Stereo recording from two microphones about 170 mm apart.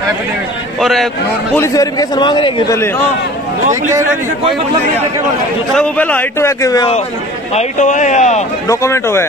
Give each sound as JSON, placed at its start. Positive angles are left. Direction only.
{"t": 0.7, "sound": "a man's voice", "side_deg": 0}
{"t": 1.5, "sound": "a man's voice", "side_deg": 20}
{"t": 5.8, "sound": "a man's voice", "side_deg": 10}
{"t": 7.5, "sound": "speech", "side_deg": 45}
{"t": 8.6, "sound": "a man's voice", "side_deg": 15}